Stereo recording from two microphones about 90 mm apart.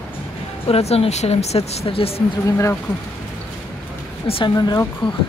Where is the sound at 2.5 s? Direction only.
30° left (ahead or behind).